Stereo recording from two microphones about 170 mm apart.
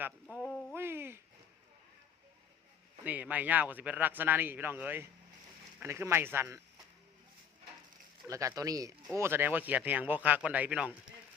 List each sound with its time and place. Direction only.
0.0 s speech: 5° right (ahead or behind)
0.7 s speech: 15° right (ahead or behind)
3.0 s speech: 10° right (ahead or behind)
8.3 s speech: 20° right (ahead or behind)